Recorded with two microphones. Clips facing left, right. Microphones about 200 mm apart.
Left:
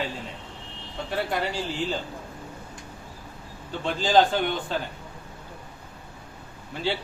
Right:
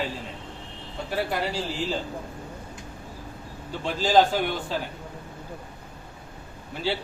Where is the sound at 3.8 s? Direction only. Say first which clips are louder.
Even; 5° right (ahead or behind).